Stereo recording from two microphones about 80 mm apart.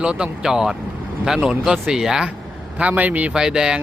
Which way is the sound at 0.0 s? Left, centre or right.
Centre.